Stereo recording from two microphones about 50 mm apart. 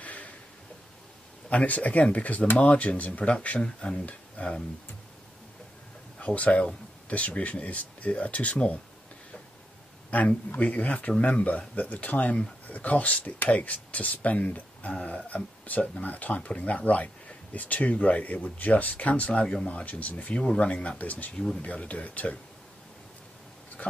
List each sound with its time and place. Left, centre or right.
0.0 s a sound: left
1.5 s speech: left
3.6 s speech: centre
6.1 s speech: left
10.1 s speech: left
14.9 s speech: centre
15.2 s speech: left
19.8 s speech: left
20.4 s speech: centre
21.0 s speech: left
23.8 s dog: left